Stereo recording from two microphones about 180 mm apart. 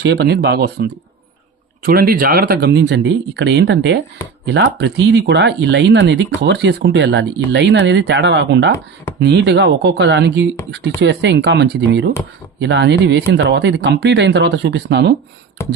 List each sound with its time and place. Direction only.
0.0 s speech: 70° right (ahead or behind)
4.4 s speech: 70° right (ahead or behind)
15.6 s a sound: 15° left (ahead or behind)